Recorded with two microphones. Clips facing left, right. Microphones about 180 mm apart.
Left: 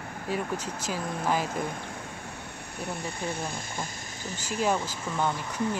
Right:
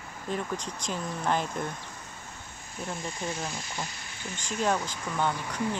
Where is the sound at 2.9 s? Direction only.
60° left (ahead or behind).